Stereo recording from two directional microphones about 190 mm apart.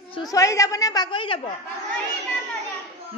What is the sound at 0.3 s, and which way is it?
A woman's voice, 15° left (ahead or behind).